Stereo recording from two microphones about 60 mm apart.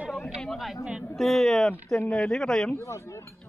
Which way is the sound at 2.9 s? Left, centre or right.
Left.